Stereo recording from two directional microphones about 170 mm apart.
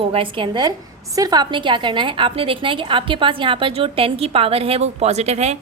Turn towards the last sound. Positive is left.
turn(degrees=-40)  # may be behind; listen again after turning